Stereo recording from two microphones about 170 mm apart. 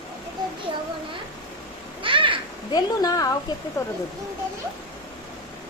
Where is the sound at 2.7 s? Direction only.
20° left (ahead or behind).